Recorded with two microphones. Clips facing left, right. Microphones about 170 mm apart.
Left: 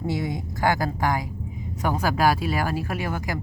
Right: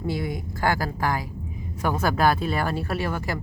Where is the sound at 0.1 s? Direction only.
20° left (ahead or behind).